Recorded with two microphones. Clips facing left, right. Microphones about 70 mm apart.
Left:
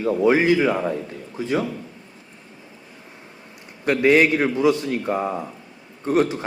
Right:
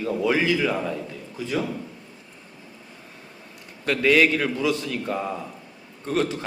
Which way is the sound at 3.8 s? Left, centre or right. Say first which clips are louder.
Left 3 dB; left.